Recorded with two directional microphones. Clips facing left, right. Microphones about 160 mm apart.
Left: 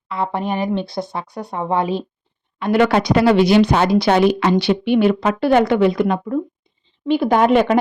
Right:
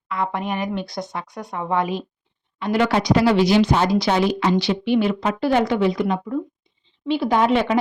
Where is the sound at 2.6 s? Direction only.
60° left (ahead or behind).